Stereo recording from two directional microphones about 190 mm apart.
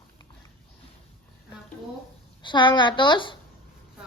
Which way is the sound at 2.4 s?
25° left (ahead or behind).